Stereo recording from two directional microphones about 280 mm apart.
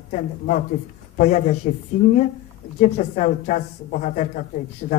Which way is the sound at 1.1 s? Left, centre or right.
Left.